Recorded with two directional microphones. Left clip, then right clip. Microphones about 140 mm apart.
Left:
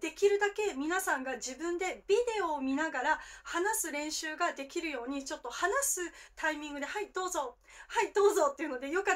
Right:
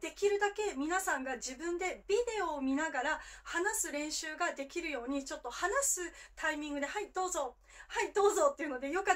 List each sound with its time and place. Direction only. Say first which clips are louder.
0.0 s speech: left 3 dB; 30° left (ahead or behind)